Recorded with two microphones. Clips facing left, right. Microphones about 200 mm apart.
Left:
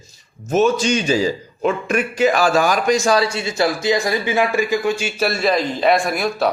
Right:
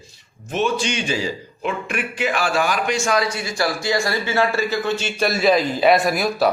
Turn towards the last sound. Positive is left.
turn(degrees=0)  # may be behind; listen again after turning